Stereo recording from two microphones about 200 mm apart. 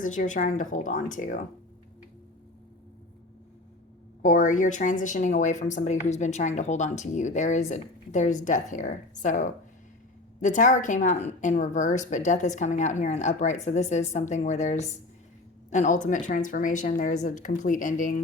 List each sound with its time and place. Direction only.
0.0 s a woman's voice: 40° left (ahead or behind)
4.2 s a woman's voice: 40° left (ahead or behind)